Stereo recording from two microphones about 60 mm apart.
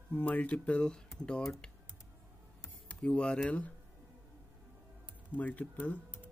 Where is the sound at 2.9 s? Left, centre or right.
Centre.